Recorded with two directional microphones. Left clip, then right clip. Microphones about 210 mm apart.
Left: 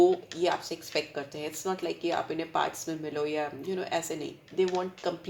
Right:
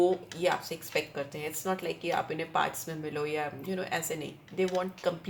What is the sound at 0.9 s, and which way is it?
Speech, 30° left (ahead or behind).